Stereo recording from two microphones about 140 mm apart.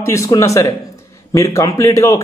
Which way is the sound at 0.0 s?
20° left (ahead or behind).